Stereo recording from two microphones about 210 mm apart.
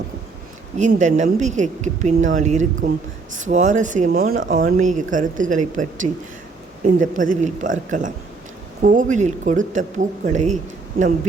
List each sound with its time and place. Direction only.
0.8 s speech: 35° right (ahead or behind)